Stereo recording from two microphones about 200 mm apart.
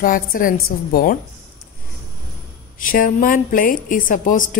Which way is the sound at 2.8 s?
45° left (ahead or behind).